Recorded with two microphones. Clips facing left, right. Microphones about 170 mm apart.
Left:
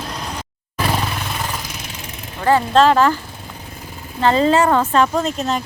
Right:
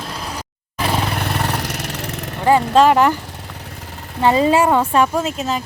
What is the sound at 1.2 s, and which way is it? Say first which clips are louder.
Vehicle: right 5 dB; 65° right (ahead or behind).